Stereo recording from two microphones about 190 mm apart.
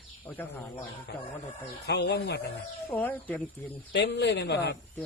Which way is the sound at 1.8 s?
65° left (ahead or behind).